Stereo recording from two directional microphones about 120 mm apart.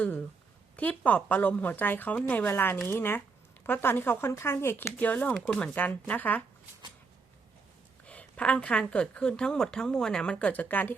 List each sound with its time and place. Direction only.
0.0 s a woman's voice: 15° left (ahead or behind)
8.0 s a woman's voice: 10° left (ahead or behind)